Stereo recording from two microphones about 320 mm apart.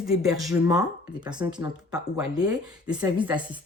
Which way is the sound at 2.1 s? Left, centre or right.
Centre.